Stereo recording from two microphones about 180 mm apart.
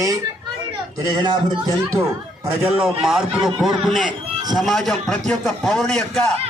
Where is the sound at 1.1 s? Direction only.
25° right (ahead or behind).